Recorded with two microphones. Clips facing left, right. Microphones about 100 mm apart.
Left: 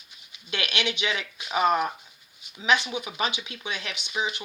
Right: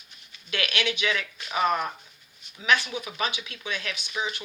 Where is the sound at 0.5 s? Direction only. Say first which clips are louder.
Right 1 dB; 25° left (ahead or behind).